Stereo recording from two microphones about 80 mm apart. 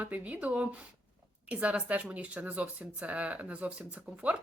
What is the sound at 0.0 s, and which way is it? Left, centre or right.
Speech, centre.